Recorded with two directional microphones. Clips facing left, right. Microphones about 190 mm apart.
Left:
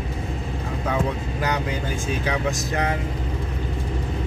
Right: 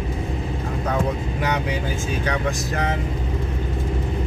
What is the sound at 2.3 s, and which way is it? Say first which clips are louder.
Speech: even; centre (ahead or behind).